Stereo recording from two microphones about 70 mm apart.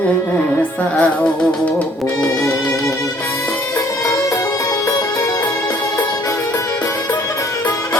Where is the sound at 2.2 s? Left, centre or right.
Left.